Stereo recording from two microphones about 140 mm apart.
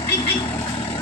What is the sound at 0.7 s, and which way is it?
Vehicle, 30° left (ahead or behind).